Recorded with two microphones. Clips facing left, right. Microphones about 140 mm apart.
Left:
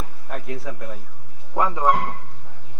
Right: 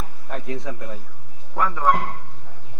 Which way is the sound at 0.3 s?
Centre (ahead or behind).